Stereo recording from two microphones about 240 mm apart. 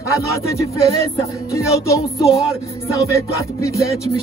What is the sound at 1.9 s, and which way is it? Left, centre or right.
Speech, centre.